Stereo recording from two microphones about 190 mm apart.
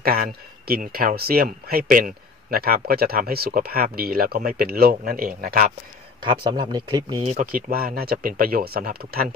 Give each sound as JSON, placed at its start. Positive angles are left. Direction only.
{"t": 0.0, "sound": "speech", "side_deg": -50}
{"t": 6.2, "sound": "speech", "side_deg": -25}
{"t": 7.2, "sound": "speech", "side_deg": -45}